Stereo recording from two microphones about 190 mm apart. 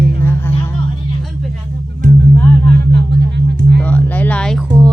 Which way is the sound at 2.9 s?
65° right (ahead or behind).